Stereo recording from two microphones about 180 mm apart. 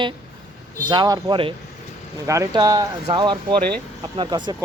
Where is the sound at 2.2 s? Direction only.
15° right (ahead or behind).